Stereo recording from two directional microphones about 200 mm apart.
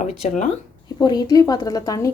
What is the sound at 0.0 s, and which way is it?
Speech, 35° left (ahead or behind).